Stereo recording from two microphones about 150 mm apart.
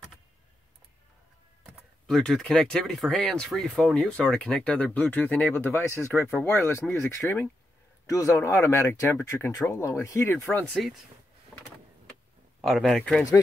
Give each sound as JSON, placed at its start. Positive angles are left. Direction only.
{"t": 2.0, "sound": "speech", "side_deg": 0}
{"t": 10.4, "sound": "speech", "side_deg": 0}
{"t": 12.6, "sound": "speech", "side_deg": 0}